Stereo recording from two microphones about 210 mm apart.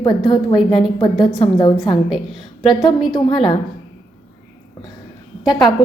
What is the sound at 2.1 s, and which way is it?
Speech, centre (ahead or behind).